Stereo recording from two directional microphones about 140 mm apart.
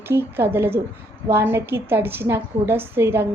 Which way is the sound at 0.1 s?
15° right (ahead or behind).